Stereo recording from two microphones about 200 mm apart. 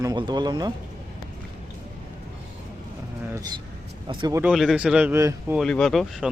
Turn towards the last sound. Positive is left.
turn(degrees=0)  # may be behind; listen again after turning